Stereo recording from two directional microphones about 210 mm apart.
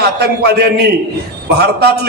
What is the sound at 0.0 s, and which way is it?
A man's voice, 50° right (ahead or behind).